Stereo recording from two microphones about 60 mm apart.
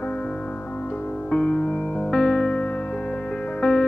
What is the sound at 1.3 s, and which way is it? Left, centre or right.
Music, centre.